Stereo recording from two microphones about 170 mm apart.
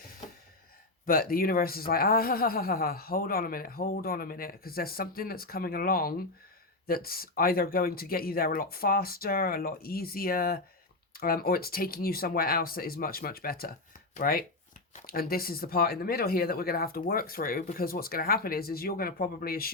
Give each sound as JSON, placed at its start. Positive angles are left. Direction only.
{"t": 1.0, "sound": "speech", "side_deg": 60}